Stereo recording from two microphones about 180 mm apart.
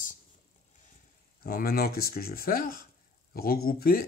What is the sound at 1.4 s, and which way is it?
Speech, 55° left (ahead or behind).